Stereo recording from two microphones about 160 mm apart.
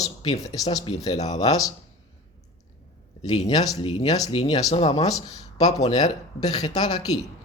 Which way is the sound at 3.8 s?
40° left (ahead or behind).